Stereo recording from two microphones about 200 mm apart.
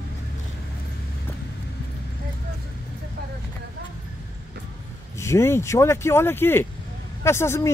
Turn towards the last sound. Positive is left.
turn(degrees=15)  # may be behind; listen again after turning